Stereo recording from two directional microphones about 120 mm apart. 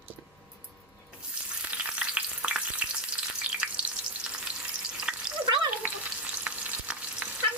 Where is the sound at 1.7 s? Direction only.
10° right (ahead or behind).